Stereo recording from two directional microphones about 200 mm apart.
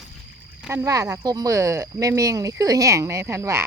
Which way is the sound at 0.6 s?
15° right (ahead or behind).